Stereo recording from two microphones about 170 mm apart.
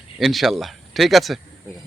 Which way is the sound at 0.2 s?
Centre (ahead or behind).